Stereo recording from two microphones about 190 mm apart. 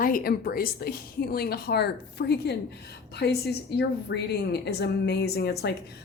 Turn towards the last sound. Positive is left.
turn(degrees=60)  # may be behind; listen again after turning